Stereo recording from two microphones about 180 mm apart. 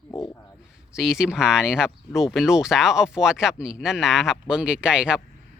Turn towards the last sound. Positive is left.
turn(degrees=-5)  # may be behind; listen again after turning